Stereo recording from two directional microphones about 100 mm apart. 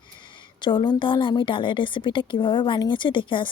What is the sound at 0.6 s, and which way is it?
A woman's voice, 50° left (ahead or behind).